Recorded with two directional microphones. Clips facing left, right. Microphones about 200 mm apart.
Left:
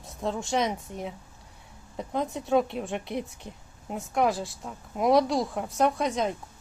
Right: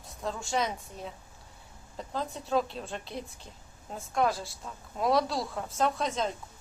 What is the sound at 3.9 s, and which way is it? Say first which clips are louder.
A woman's voice: left 3 dB; 20° left (ahead or behind).